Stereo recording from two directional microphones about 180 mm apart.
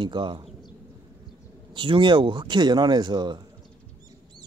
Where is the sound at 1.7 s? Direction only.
30° right (ahead or behind).